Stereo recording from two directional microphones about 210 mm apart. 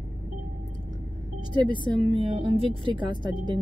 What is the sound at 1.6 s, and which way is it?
Speech, 25° right (ahead or behind).